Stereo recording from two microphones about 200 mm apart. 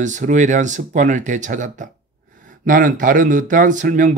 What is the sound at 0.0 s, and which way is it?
Speech, 40° right (ahead or behind).